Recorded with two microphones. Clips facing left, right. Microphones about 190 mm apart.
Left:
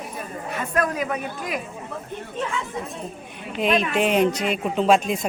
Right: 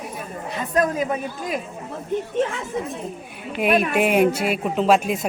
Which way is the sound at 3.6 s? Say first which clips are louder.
Right 2 dB; 10° right (ahead or behind).